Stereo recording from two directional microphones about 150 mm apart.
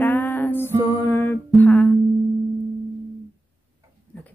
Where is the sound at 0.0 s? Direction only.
10° left (ahead or behind).